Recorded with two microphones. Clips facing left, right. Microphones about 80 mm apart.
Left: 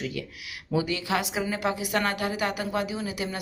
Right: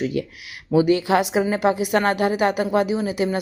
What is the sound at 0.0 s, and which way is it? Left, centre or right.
A woman's voice, right.